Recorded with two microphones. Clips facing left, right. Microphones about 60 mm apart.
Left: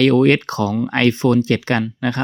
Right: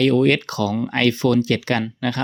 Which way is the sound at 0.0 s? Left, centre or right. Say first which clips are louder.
Left 3 dB; left.